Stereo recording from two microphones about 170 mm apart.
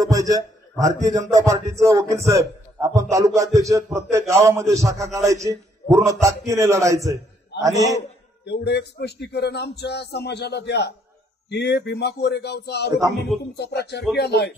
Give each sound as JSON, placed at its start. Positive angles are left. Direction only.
{"t": 0.0, "sound": "a man's voice", "side_deg": -20}
{"t": 8.5, "sound": "speech", "side_deg": 80}